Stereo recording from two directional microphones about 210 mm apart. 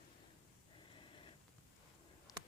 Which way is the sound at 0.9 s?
25° left (ahead or behind).